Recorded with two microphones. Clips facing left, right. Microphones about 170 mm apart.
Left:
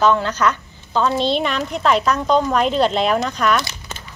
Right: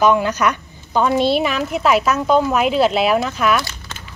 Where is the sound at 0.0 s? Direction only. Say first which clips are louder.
Right 1 dB; 10° right (ahead or behind).